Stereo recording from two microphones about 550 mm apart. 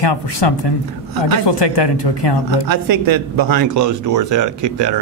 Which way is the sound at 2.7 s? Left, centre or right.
Right.